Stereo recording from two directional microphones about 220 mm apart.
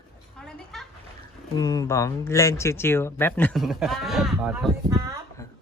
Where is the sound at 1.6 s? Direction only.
15° left (ahead or behind); by 5.2 s 15° right (ahead or behind).